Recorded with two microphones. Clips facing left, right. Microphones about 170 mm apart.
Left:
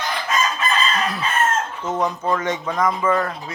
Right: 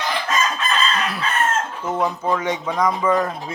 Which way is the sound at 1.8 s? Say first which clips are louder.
Right 1 dB; 10° right (ahead or behind).